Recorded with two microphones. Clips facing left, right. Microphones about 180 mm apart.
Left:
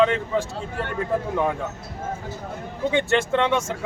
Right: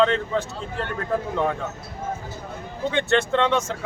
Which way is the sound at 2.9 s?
10° left (ahead or behind).